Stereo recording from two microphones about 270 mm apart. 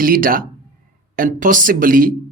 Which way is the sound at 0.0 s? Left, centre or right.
Right.